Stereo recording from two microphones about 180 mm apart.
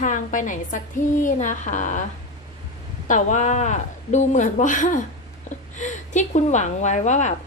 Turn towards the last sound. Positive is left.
turn(degrees=40)  # may be behind; listen again after turning